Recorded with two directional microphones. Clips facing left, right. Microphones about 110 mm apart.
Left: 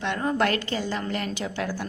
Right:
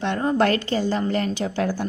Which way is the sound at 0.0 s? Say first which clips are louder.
Right 4 dB; 30° right (ahead or behind).